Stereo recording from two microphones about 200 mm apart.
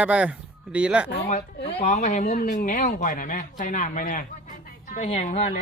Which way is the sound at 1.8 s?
35° left (ahead or behind).